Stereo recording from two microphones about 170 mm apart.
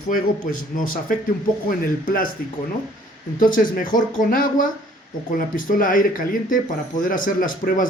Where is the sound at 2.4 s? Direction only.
60° left (ahead or behind).